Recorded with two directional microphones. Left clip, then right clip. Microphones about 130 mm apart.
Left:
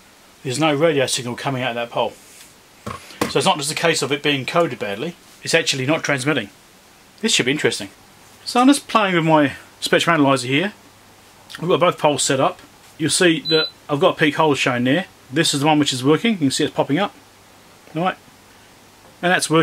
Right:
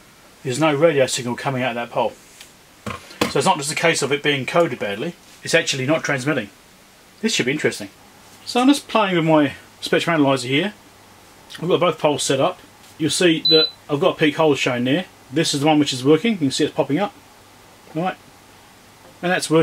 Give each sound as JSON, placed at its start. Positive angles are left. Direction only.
{"t": 0.5, "sound": "speech", "side_deg": 35}
{"t": 1.0, "sound": "speech", "side_deg": 40}
{"t": 3.3, "sound": "speech", "side_deg": 15}
{"t": 3.9, "sound": "speech", "side_deg": 35}
{"t": 4.5, "sound": "speech", "side_deg": 15}
{"t": 5.0, "sound": "speech", "side_deg": 50}
{"t": 7.6, "sound": "speech", "side_deg": 50}
{"t": 8.5, "sound": "speech", "side_deg": 40}
{"t": 19.2, "sound": "speech", "side_deg": 40}